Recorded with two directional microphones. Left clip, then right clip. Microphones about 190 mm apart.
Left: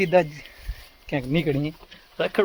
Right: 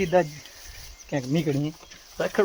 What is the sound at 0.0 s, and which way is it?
Speech, 20° left (ahead or behind).